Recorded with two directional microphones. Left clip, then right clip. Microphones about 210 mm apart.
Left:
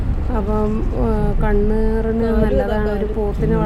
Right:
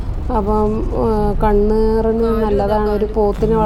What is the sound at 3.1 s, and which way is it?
Speech, 10° right (ahead or behind).